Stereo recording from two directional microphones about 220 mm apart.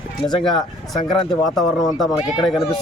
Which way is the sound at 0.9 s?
15° left (ahead or behind).